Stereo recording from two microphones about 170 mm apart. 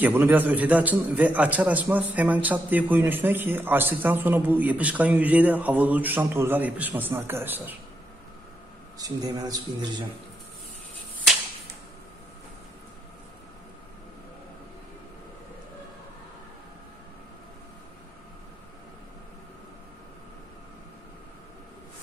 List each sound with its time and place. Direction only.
0.0 s a man's voice: 10° right (ahead or behind)
8.9 s a man's voice: 20° right (ahead or behind)